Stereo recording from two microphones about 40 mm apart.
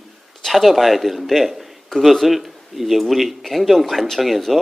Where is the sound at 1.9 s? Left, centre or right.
Centre.